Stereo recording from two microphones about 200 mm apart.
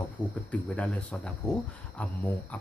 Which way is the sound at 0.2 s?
5° left (ahead or behind).